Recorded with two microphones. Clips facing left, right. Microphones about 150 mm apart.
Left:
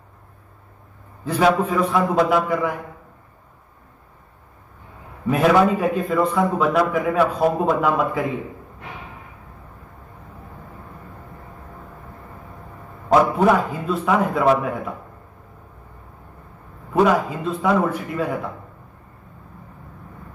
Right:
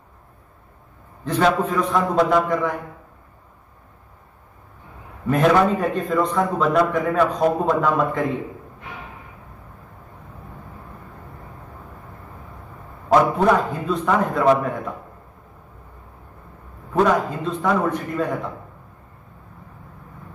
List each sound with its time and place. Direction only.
1.2 s a man's voice: 10° left (ahead or behind)
5.3 s a man's voice: 5° left (ahead or behind)
13.1 s a man's voice: 5° left (ahead or behind)
16.9 s a man's voice: 5° left (ahead or behind)